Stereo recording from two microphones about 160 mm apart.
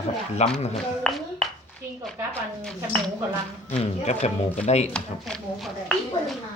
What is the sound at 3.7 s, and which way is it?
Speech, 45° left (ahead or behind).